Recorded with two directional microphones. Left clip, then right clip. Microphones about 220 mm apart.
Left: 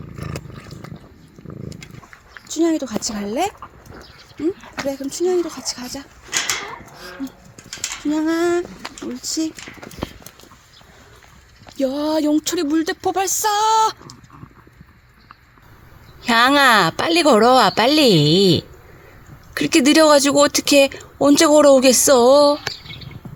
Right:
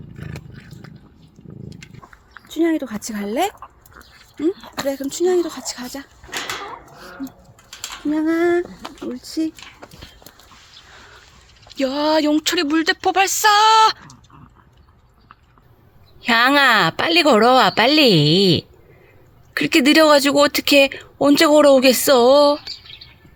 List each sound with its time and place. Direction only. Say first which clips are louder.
2.7 s speech: left 2 dB; 20° right (ahead or behind)
4.5 s speech: even; 45° right (ahead or behind)
4.9 s speech: right 2 dB; 20° right (ahead or behind)
8.1 s a woman's voice: right 1 dB; centre (ahead or behind)
11.8 s a woman's voice: right 2 dB; centre (ahead or behind)
16.2 s a woman's voice: left 1 dB; centre (ahead or behind)